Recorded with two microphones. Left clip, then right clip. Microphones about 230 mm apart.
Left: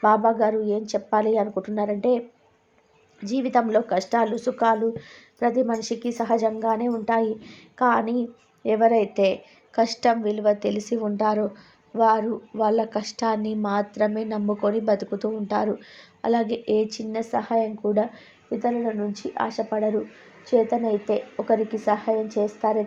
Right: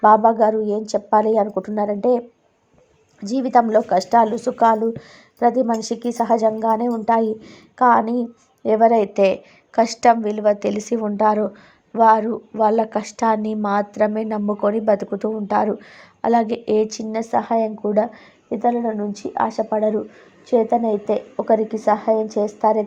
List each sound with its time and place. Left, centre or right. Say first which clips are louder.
0.0 s speech: right 6 dB; right
3.2 s speech: right 6 dB; right
9.0 s a woman's voice: right 4 dB; centre
9.7 s speech: right 4 dB; centre
10.0 s a woman's voice: right 6 dB; centre
10.9 s speech: right 6 dB; centre
16.5 s a woman's voice: right 4 dB; centre
17.2 s speech: right 4 dB; centre